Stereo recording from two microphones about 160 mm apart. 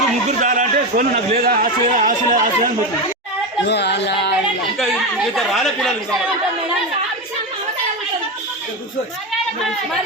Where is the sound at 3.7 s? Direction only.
90° left.